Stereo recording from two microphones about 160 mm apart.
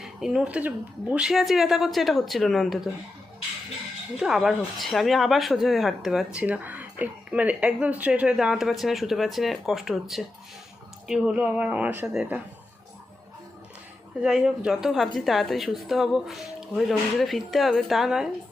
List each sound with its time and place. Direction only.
0.0 s speech: 5° right (ahead or behind)
4.2 s speech: centre (ahead or behind)
14.2 s speech: 5° right (ahead or behind)